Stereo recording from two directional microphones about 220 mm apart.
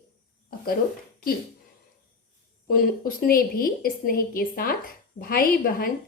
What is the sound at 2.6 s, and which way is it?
A woman's voice, 40° left (ahead or behind).